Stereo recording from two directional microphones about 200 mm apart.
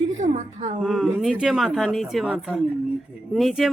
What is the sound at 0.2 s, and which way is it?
Speech, 35° right (ahead or behind).